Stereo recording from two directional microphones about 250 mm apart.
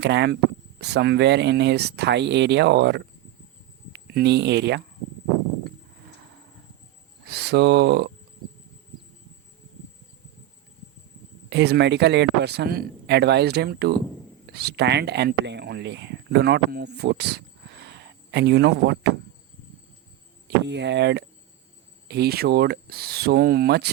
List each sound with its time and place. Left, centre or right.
0.0 s speech: right
7.3 s speech: right
11.4 s a man's voice: right
20.7 s a man's voice: right